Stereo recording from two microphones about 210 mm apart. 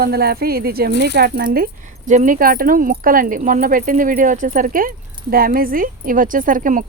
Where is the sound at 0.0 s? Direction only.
50° right (ahead or behind).